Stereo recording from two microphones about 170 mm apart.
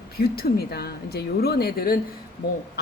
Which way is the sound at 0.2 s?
65° left (ahead or behind).